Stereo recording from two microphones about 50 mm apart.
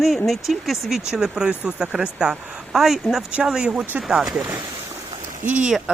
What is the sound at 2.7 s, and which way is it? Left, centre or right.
Speech, centre.